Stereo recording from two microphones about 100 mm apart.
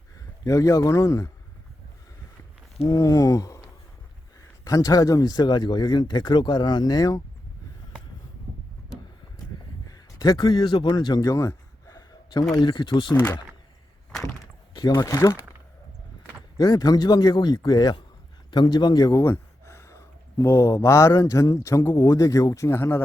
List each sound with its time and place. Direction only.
0.2 s a man's voice: 35° left (ahead or behind)
2.8 s speech: 35° left (ahead or behind)
9.9 s a sound: 45° left (ahead or behind)
12.5 s speech: 50° left (ahead or behind)
13.1 s speech: 20° left (ahead or behind)
14.8 s speech: 35° left (ahead or behind)
16.6 s speech: 40° left (ahead or behind)
19.2 s speech: 25° left (ahead or behind)